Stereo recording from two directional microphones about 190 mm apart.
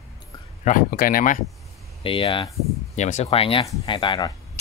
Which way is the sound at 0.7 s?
45° left (ahead or behind).